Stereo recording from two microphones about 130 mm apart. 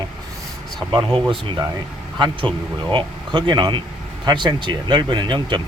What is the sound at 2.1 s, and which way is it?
Speech, 35° right (ahead or behind).